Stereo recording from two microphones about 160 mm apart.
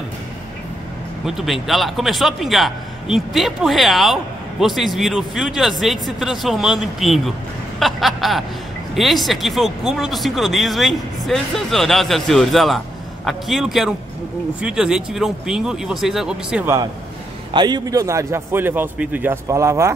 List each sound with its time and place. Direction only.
1.2 s a man's voice: centre (ahead or behind)
17.5 s a man's voice: 25° right (ahead or behind)